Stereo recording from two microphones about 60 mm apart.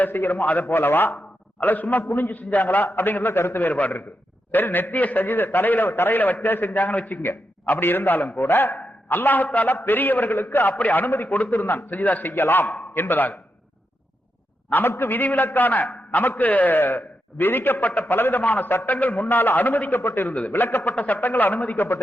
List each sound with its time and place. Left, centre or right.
0.0 s a man's voice: left
2.0 s a man's voice: left
2.3 s a man's voice: left
3.8 s a man's voice: left
8.3 s a man's voice: left
9.0 s a man's voice: left
14.7 s a man's voice: left